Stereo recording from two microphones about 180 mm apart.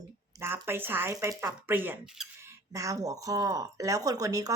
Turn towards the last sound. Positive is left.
turn(degrees=-20)  # may be behind; listen again after turning